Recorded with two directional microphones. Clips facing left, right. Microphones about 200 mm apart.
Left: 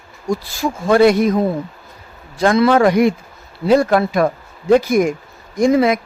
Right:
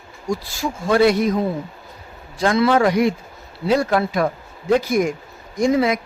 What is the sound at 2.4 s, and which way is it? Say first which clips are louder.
A man's voice: left 4 dB; 55° left (ahead or behind).